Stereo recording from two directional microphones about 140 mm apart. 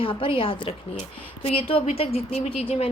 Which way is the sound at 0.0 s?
40° left (ahead or behind).